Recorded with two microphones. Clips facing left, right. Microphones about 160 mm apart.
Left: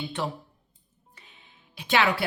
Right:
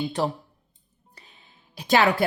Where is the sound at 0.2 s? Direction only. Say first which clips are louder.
Right 5 dB; 40° right (ahead or behind).